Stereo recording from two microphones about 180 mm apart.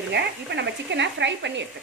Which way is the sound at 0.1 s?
70° right (ahead or behind).